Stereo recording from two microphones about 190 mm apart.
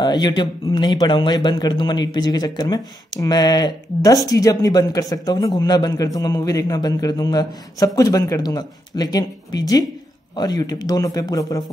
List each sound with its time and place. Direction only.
0.0 s speech: 20° left (ahead or behind)